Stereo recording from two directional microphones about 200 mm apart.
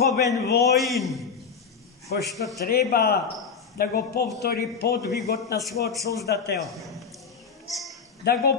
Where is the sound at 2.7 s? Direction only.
50° left (ahead or behind).